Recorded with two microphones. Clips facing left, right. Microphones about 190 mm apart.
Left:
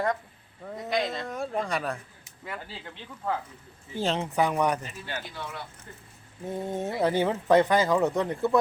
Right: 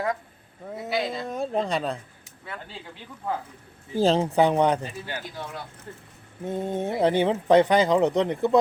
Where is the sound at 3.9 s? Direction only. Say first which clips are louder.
Right 6 dB; 35° right (ahead or behind).